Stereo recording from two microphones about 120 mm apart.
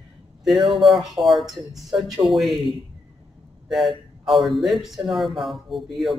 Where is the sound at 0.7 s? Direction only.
Centre (ahead or behind).